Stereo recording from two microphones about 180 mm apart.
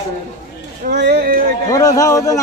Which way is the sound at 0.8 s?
65° right (ahead or behind).